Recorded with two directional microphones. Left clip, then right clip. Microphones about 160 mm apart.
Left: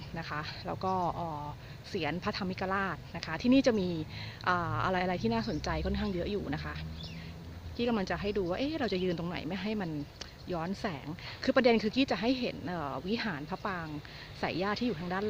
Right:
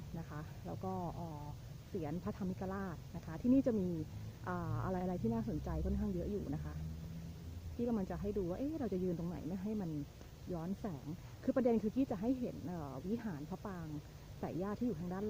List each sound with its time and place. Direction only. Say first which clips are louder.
0.2 s speech: left 14 dB; 20° left (ahead or behind)
0.7 s speech: left 12 dB; 40° left (ahead or behind)
2.0 s speech: left 10 dB; 15° left (ahead or behind)
7.9 s speech: left 9 dB; 15° left (ahead or behind)